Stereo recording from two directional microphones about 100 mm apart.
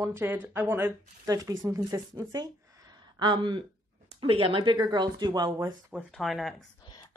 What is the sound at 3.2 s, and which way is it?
A woman's voice, 50° right (ahead or behind).